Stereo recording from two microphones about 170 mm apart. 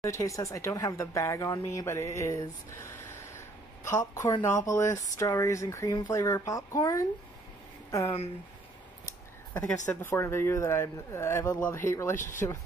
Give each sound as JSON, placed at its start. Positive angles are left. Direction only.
{"t": 0.0, "sound": "speech", "side_deg": 15}
{"t": 9.5, "sound": "speech", "side_deg": 10}